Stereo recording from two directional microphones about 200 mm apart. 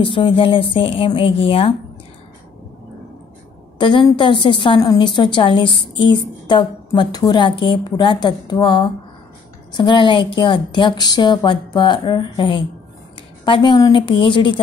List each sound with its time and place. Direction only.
0.0 s a woman's voice: 25° left (ahead or behind)
3.7 s a woman's voice: 25° left (ahead or behind)